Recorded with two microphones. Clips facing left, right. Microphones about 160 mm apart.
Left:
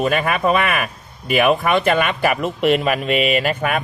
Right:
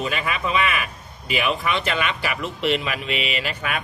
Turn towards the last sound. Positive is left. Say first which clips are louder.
# left 8 dB
turn(degrees=50)  # may be behind; listen again after turning